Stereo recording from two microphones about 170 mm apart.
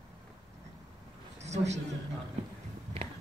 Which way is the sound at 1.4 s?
40° right (ahead or behind).